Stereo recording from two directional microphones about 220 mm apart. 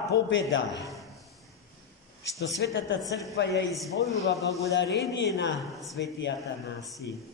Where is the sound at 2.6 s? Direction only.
50° left (ahead or behind).